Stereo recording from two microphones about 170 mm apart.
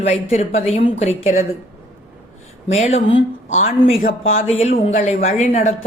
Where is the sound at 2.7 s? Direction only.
40° left (ahead or behind).